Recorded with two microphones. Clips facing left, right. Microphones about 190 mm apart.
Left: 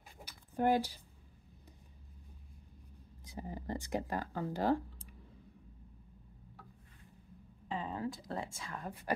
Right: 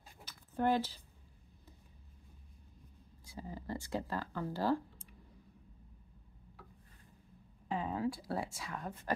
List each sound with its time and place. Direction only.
0.2 s a sound: 10° left (ahead or behind)
3.3 s speech: 20° left (ahead or behind)
7.6 s speech: 10° right (ahead or behind)